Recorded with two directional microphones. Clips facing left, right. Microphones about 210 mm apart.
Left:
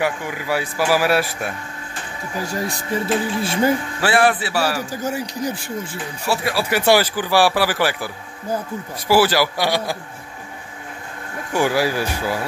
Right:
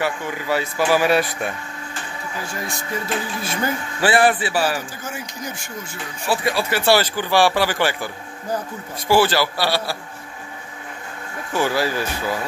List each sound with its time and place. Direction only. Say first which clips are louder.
0.0 s speech: left 1 dB; 10° left (ahead or behind)
2.4 s speech: left 6 dB; 35° left (ahead or behind)
4.0 s a man's voice: right 2 dB; centre (ahead or behind)
4.9 s speech: left 8 dB; 35° left (ahead or behind)
6.2 s a man's voice: even; 5° left (ahead or behind)
11.5 s speech: left 2 dB; 15° left (ahead or behind)